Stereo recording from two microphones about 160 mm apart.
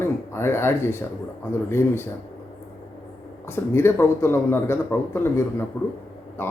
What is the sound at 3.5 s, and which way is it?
Speech, 15° left (ahead or behind).